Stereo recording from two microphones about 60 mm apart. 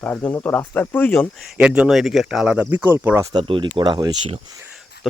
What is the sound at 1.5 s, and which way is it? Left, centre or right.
Speech, centre.